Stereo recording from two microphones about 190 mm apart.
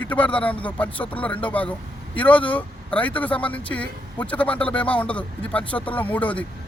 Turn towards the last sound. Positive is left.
turn(degrees=10)  # may be behind; listen again after turning